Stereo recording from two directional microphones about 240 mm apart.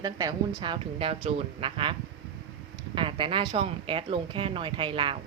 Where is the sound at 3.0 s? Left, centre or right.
Right.